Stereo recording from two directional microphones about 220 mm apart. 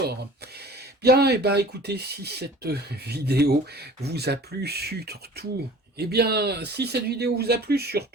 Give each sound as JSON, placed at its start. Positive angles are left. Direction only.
{"t": 1.0, "sound": "speech", "side_deg": -45}